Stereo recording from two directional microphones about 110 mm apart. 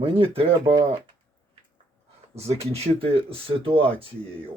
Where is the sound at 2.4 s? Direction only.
70° right (ahead or behind).